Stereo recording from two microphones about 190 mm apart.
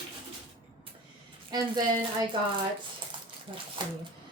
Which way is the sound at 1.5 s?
20° right (ahead or behind).